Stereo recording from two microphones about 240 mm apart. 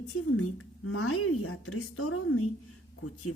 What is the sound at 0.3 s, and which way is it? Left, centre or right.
Speech, left.